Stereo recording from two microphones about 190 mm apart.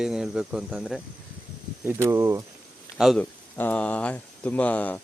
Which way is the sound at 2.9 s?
Centre (ahead or behind).